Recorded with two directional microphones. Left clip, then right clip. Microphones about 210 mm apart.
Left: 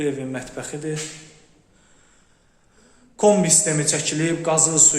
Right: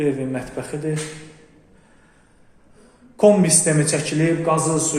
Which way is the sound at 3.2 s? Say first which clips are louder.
Right 2 dB; 5° left (ahead or behind).